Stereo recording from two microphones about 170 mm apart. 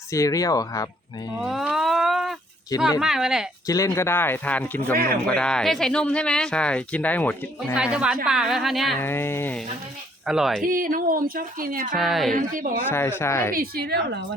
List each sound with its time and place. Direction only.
0.1 s speech: 20° left (ahead or behind)
1.4 s speech: 5° right (ahead or behind)
3.7 s speech: 20° left (ahead or behind)
7.8 s speech: 5° right (ahead or behind)
9.0 s speech: 15° left (ahead or behind)
10.2 s speech: 5° right (ahead or behind)
10.6 s speech: 55° right (ahead or behind)
11.9 s speech: centre (ahead or behind)
12.3 s speech: 50° right (ahead or behind)
12.9 s speech: 15° left (ahead or behind)
13.5 s speech: 60° right (ahead or behind)